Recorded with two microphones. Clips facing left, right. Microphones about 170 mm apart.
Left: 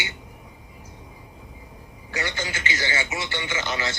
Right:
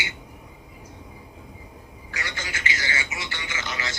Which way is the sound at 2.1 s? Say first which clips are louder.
Left 5 dB; 30° left (ahead or behind).